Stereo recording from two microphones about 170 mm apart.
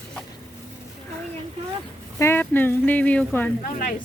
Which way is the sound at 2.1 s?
15° left (ahead or behind).